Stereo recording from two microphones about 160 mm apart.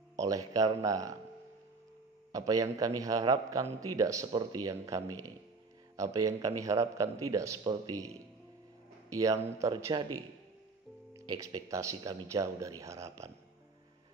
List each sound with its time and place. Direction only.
0.1 s a man's voice: 20° right (ahead or behind)
2.3 s a man's voice: 20° right (ahead or behind)